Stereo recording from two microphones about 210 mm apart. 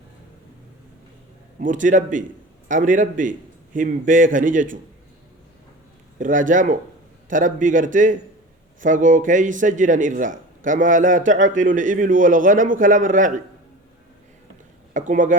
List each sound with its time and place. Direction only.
1.5 s a man's voice: 40° right (ahead or behind)
6.1 s a man's voice: 40° right (ahead or behind)
14.9 s speech: 40° right (ahead or behind)